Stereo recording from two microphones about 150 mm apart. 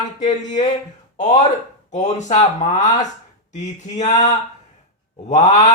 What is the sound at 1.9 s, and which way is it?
Speech, 50° left (ahead or behind).